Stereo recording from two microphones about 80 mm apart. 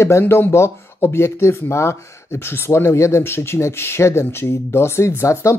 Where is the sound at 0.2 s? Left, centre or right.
Left.